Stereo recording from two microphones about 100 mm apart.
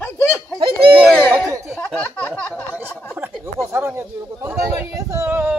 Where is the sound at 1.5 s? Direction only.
30° right (ahead or behind).